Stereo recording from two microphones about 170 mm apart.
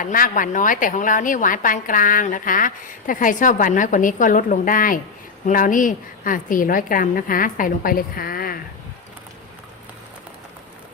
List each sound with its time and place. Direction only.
0.0 s a woman's voice: 50° left (ahead or behind)